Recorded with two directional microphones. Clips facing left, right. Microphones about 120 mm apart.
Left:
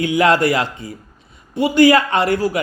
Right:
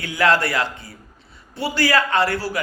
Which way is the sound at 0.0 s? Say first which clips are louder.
Left 5 dB; 20° left (ahead or behind).